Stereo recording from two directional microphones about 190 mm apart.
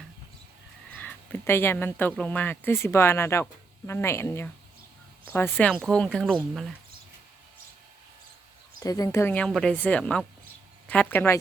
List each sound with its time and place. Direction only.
0.9 s speech: 5° left (ahead or behind)
8.8 s speech: 20° left (ahead or behind)